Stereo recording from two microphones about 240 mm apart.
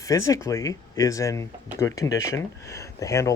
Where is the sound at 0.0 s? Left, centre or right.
Centre.